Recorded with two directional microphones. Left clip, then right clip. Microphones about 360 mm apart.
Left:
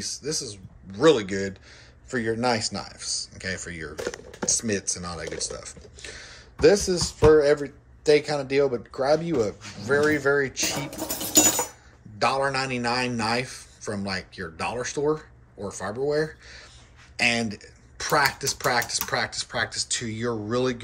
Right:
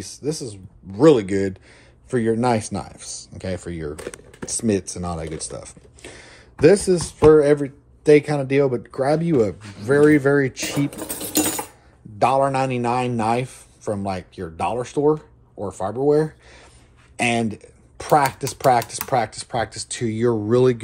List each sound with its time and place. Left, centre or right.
0.0 s speech: centre
12.2 s speech: centre